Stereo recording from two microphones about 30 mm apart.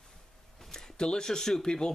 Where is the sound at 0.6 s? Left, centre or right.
Centre.